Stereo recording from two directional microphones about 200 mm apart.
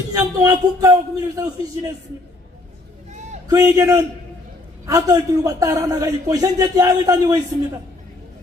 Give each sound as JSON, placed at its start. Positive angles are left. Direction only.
{"t": 0.1, "sound": "a man's voice", "side_deg": -15}
{"t": 3.5, "sound": "a man's voice", "side_deg": -15}